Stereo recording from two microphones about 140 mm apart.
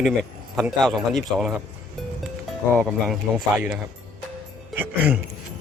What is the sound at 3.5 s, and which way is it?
A man's voice, 5° right (ahead or behind).